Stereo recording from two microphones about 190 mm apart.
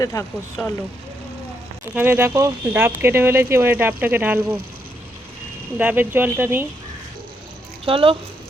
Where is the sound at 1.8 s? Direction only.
10° right (ahead or behind).